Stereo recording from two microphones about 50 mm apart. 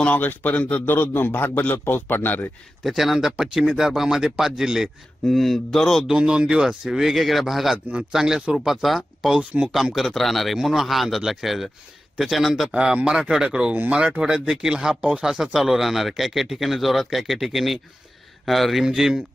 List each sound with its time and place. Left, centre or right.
0.2 s a man's voice: left
0.9 s a man's voice: left
2.8 s speech: centre
5.2 s speech: centre
6.1 s speech: centre
9.4 s speech: right
9.9 s speech: centre
12.7 s speech: right
15.2 s speech: centre
18.9 s speech: centre